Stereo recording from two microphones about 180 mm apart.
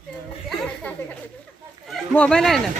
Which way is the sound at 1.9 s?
5° left (ahead or behind).